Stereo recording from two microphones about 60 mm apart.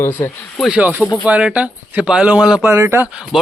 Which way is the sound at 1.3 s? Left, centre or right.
Centre.